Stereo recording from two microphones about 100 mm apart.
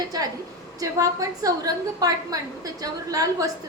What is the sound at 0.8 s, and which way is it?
A woman's voice, 35° right (ahead or behind).